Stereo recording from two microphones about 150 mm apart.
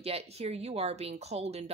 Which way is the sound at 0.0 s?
45° right (ahead or behind).